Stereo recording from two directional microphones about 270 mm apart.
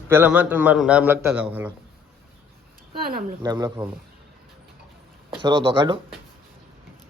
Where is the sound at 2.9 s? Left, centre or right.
Right.